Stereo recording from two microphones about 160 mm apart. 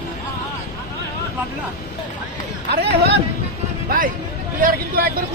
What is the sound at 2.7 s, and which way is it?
Speech, 90° right.